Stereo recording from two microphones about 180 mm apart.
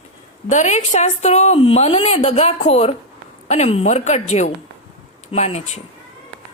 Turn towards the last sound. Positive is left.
turn(degrees=35)  # may be behind; listen again after turning